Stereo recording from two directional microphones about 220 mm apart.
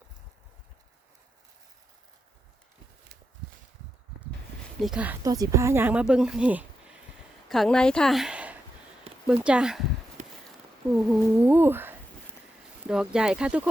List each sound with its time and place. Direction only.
4.8 s speech: 5° right (ahead or behind)
5.2 s speech: 15° right (ahead or behind)
10.2 s a sound: 30° right (ahead or behind)
11.1 s speech: 5° right (ahead or behind)